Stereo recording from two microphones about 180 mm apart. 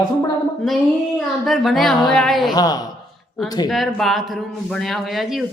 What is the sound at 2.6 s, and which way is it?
Speech, 20° left (ahead or behind).